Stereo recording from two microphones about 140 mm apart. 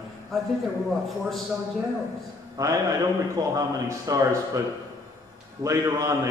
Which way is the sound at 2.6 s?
20° right (ahead or behind).